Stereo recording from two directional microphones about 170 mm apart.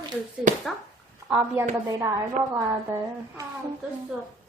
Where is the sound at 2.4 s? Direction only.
55° right (ahead or behind).